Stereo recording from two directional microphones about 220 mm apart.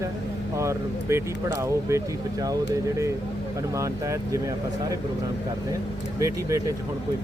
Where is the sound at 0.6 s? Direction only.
15° right (ahead or behind).